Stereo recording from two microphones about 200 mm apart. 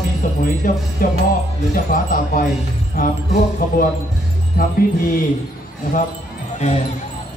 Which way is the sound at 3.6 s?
45° left (ahead or behind).